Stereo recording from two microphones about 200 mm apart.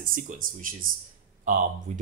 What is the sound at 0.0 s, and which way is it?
Speech, 40° right (ahead or behind).